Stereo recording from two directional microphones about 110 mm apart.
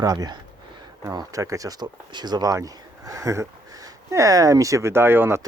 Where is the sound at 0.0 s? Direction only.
35° right (ahead or behind); by 5.4 s 20° right (ahead or behind).